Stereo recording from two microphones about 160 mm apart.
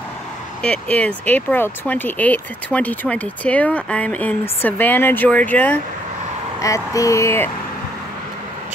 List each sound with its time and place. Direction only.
0.6 s speech: 10° left (ahead or behind)